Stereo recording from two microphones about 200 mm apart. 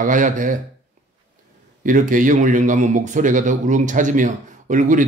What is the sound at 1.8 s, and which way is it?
A man's voice, 40° right (ahead or behind).